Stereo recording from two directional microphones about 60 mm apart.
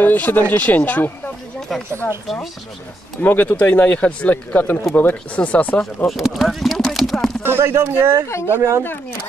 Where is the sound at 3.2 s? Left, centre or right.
Left.